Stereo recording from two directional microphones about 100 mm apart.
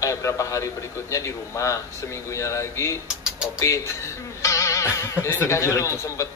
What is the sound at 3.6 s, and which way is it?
Speech, 30° left (ahead or behind).